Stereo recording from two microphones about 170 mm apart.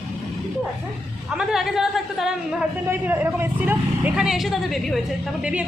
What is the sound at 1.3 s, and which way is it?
Speech, 5° right (ahead or behind).